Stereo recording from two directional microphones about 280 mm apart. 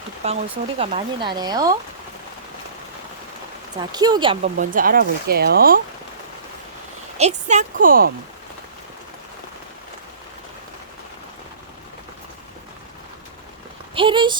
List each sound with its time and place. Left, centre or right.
0.2 s speech: right
3.9 s speech: centre
4.5 s speech: right
7.2 s speech: right
13.9 s speech: centre